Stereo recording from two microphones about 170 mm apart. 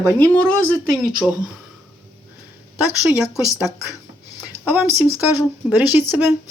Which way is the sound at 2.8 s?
5° right (ahead or behind).